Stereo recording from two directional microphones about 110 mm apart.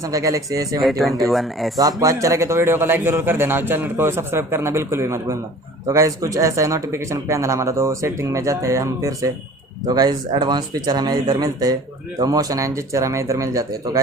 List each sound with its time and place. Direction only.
0.0 s speech: 30° right (ahead or behind)
0.8 s speech: centre (ahead or behind)
1.8 s a man's voice: 30° right (ahead or behind)